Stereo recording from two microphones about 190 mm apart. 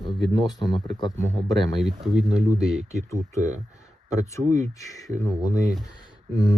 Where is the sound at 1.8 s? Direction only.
Centre (ahead or behind).